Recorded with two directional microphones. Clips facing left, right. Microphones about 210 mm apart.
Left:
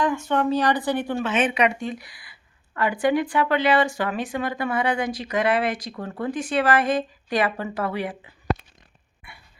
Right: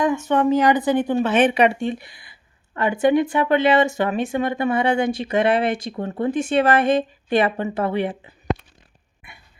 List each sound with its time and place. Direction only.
0.0 s speech: 20° right (ahead or behind)
1.5 s speech: 30° right (ahead or behind)